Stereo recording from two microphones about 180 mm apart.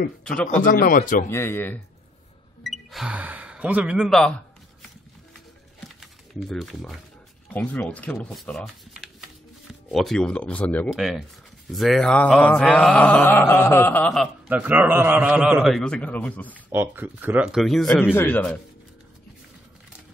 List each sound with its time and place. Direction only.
0.6 s speech: 50° left (ahead or behind)
1.3 s mantra: 15° left (ahead or behind)
2.6 s speech: centre (ahead or behind)
5.9 s typing: centre (ahead or behind)
7.5 s mantra: 10° left (ahead or behind)
11.0 s a man's voice: centre (ahead or behind)
11.7 s mantra: centre (ahead or behind)
14.5 s a man's voice: 10° right (ahead or behind); by 16.5 s 10° left (ahead or behind)
16.7 s a man's voice: 10° right (ahead or behind); by 18.6 s 10° left (ahead or behind)